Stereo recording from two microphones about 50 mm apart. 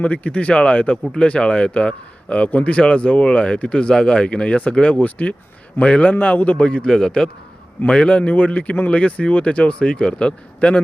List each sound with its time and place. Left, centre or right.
0.0 s a man's voice: left
6.6 s a man's voice: left
7.9 s a man's voice: left